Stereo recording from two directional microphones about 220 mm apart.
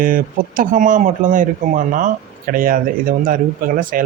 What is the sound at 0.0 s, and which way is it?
Speech, 40° right (ahead or behind).